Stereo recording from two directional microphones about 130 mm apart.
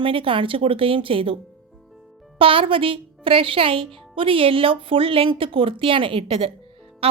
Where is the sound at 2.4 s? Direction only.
45° right (ahead or behind).